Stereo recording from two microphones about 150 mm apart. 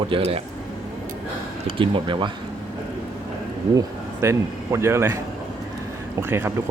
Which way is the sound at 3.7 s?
20° right (ahead or behind).